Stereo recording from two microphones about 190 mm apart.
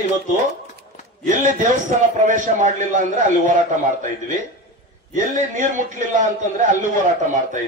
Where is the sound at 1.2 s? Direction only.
40° right (ahead or behind).